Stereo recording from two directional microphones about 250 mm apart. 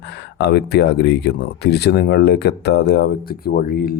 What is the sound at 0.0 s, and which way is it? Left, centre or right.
Speech, left.